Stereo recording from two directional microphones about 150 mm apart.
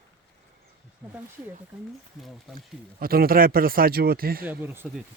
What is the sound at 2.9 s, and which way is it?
Speech, 85° right.